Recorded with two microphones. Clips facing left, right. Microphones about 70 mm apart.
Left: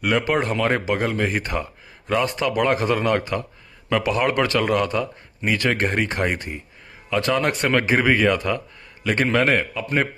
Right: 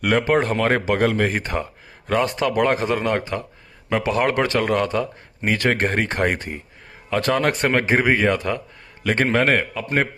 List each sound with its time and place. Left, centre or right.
0.2 s a man's voice: right